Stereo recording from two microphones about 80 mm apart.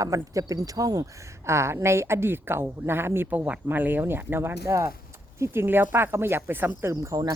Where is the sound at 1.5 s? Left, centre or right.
Right.